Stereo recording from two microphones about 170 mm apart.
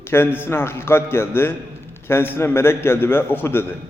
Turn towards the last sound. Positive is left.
turn(degrees=10)  # may be behind; listen again after turning